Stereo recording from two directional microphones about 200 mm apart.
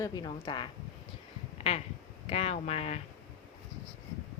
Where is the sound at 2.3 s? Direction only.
30° left (ahead or behind).